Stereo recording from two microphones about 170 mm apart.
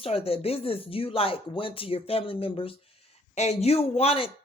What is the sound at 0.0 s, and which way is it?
Speech, 35° left (ahead or behind).